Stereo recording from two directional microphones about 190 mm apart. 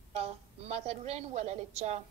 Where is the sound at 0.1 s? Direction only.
35° right (ahead or behind).